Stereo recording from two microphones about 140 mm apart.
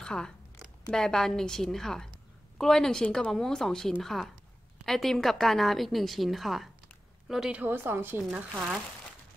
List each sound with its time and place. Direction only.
0.0 s a woman's voice: 5° left (ahead or behind)
7.6 s a woman's voice: 15° right (ahead or behind)